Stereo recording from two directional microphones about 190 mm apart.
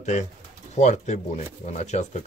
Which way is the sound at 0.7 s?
40° left (ahead or behind).